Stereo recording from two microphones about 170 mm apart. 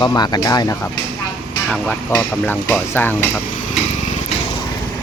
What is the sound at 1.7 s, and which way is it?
Speech, 5° left (ahead or behind).